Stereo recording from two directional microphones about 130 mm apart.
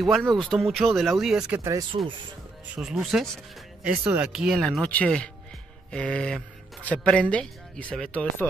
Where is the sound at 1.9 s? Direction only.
50° right (ahead or behind).